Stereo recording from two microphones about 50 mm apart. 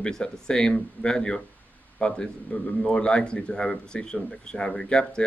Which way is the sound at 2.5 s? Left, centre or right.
Left.